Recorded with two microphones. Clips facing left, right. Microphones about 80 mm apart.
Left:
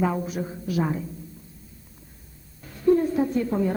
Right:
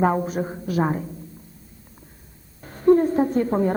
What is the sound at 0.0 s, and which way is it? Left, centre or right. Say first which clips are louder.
A woman's voice: right 5 dB; right.